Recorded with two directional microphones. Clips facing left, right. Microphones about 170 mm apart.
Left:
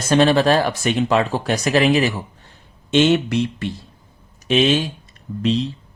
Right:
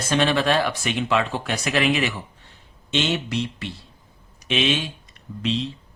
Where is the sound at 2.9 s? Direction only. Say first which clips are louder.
Left 9 dB; 50° left (ahead or behind).